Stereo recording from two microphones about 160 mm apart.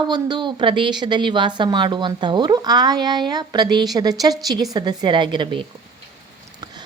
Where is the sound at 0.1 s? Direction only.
30° right (ahead or behind).